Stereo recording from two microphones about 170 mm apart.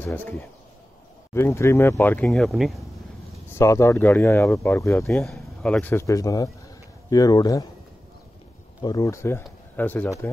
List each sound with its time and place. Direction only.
0.0 s speech: 10° left (ahead or behind)
1.3 s speech: 15° left (ahead or behind)
2.2 s speech: centre (ahead or behind)
3.4 s speech: 15° left (ahead or behind)
5.1 s speech: 5° left (ahead or behind); by 7.6 s 20° left (ahead or behind)
8.8 s speech: 20° left (ahead or behind)